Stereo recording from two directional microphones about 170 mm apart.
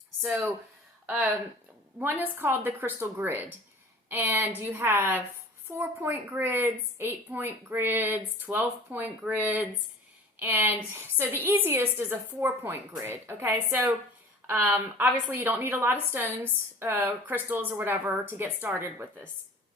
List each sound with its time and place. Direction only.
0.2 s a woman's voice: 15° right (ahead or behind)
2.0 s a woman's voice: 10° right (ahead or behind)